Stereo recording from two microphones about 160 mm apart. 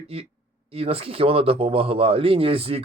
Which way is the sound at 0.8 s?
40° right (ahead or behind).